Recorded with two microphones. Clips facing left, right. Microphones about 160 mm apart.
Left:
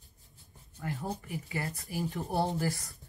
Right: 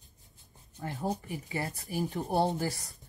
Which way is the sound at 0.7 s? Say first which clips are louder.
Right 3 dB; 25° right (ahead or behind).